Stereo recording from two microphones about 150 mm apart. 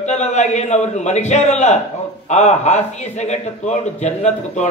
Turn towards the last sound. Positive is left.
turn(degrees=50)  # may be behind; listen again after turning